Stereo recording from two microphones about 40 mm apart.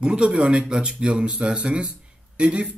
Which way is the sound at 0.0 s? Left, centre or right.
Right.